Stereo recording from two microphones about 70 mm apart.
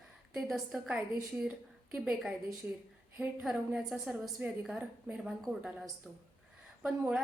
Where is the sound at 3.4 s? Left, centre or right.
Centre.